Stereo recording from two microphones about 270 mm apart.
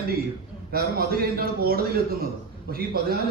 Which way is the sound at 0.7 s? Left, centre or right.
Right.